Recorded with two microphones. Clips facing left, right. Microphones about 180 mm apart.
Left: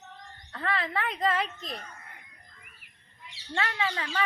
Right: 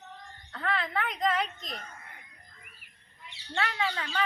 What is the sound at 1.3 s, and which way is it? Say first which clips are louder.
Speech: left 1 dB; 30° left (ahead or behind).